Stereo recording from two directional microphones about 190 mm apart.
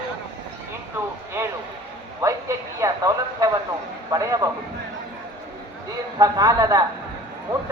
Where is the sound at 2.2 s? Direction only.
15° right (ahead or behind).